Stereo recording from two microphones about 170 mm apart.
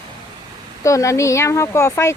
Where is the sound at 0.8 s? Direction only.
20° left (ahead or behind).